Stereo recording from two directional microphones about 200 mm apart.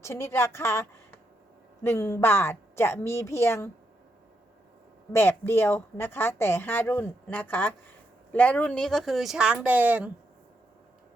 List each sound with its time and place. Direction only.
0.0 s a woman's voice: 15° left (ahead or behind)
5.1 s a woman's voice: 10° left (ahead or behind); by 10.1 s 5° right (ahead or behind)